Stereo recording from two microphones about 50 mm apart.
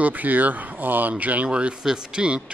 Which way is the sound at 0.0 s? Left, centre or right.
Right.